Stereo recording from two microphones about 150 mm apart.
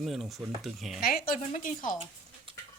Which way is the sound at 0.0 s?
Centre (ahead or behind).